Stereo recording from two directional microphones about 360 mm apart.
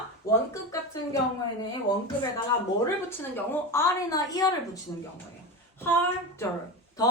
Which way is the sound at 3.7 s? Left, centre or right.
Centre.